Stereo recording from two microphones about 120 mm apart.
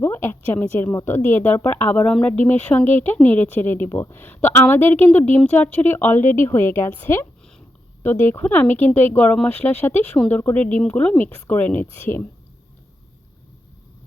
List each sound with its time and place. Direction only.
0.0 s a woman's voice: 20° left (ahead or behind)